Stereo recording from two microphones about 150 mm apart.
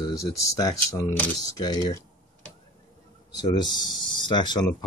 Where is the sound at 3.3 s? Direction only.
30° left (ahead or behind).